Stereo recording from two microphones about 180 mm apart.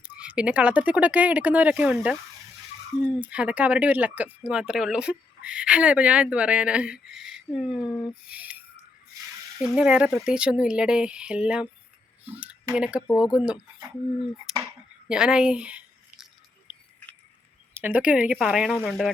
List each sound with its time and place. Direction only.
0.0 s speech: 10° right (ahead or behind)
8.3 s a sound: 10° right (ahead or behind)
9.6 s a child's voice: 5° right (ahead or behind)
13.0 s speech: 20° left (ahead or behind)
13.3 s speech: 5° right (ahead or behind)
14.5 s a sound: 5° right (ahead or behind)
17.7 s speech: 10° right (ahead or behind)